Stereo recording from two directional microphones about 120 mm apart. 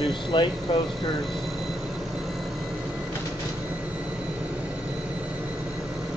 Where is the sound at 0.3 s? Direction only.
40° left (ahead or behind).